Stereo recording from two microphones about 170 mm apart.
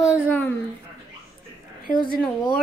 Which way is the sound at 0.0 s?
10° left (ahead or behind).